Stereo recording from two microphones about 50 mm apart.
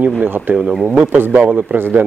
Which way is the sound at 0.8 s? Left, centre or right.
Right.